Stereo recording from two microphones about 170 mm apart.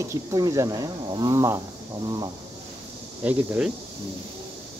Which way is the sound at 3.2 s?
10° right (ahead or behind).